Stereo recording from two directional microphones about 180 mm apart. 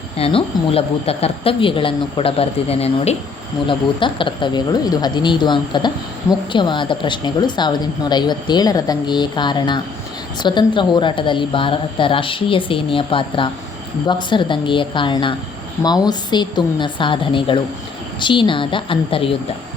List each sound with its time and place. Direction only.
0.2 s speech: 30° left (ahead or behind)